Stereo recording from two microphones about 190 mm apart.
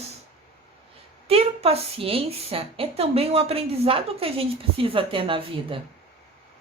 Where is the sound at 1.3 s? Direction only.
30° right (ahead or behind).